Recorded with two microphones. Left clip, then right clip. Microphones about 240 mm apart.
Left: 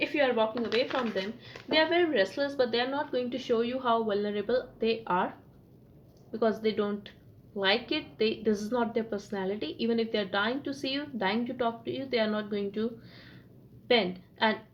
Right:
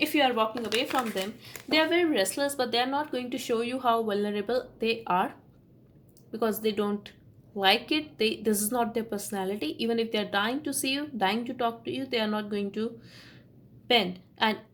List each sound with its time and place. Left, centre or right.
0.0 s a sound: right
1.7 s a woman's voice: right
6.3 s a woman's voice: right